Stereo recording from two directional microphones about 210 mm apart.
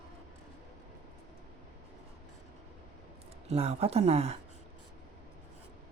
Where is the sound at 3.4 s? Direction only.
30° right (ahead or behind).